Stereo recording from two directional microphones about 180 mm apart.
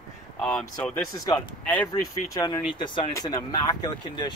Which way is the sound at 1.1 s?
15° left (ahead or behind).